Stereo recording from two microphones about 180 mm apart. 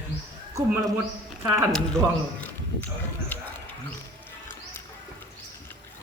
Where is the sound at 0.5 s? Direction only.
15° right (ahead or behind).